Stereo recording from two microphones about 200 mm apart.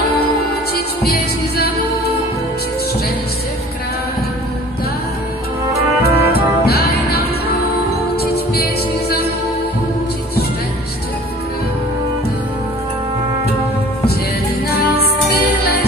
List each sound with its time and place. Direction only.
1.0 s music: 50° left (ahead or behind)
6.0 s brass instrument: 50° left (ahead or behind)
6.7 s music: 50° left (ahead or behind)